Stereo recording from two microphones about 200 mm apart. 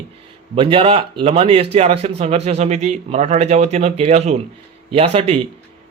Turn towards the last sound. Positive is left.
turn(degrees=-30)  # may be behind; listen again after turning